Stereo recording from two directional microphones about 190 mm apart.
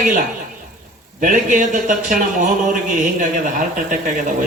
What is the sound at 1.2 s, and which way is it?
Speech, 45° right (ahead or behind).